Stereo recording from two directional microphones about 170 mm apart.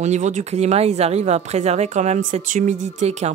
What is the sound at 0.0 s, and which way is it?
Speech, 45° right (ahead or behind).